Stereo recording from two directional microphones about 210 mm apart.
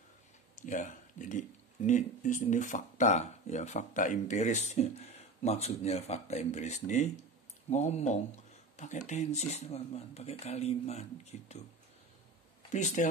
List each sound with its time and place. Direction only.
0.6 s speech: 35° left (ahead or behind)
12.7 s speech: 35° left (ahead or behind)